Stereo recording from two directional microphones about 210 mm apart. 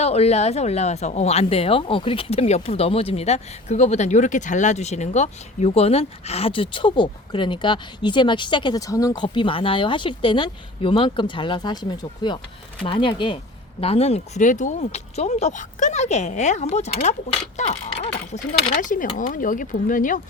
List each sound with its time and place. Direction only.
0.0 s a woman's voice: 30° left (ahead or behind)